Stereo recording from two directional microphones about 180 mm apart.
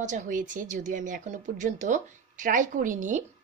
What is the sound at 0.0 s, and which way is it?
A woman's voice, 45° right (ahead or behind).